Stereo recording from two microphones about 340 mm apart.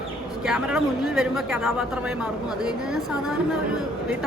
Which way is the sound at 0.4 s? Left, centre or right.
Centre.